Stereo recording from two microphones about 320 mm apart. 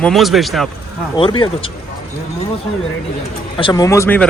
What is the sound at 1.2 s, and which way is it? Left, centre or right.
Speech, centre.